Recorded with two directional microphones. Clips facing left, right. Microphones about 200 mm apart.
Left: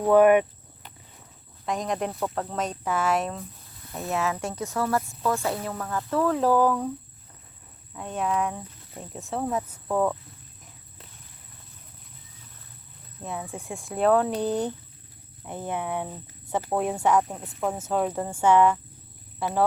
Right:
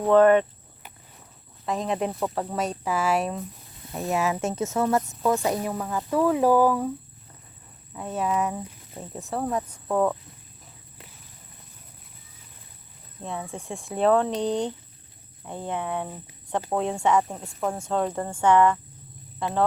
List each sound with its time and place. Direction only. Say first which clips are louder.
0.1 s speech: even; 10° left (ahead or behind)
1.6 s speech: right 1 dB; centre (ahead or behind)
7.9 s speech: right 1 dB; 5° right (ahead or behind)
13.2 s speech: right 1 dB; centre (ahead or behind)